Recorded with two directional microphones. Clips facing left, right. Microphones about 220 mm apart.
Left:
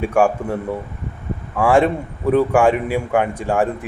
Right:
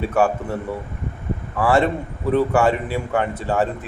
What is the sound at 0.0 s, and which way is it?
Speech, 15° left (ahead or behind).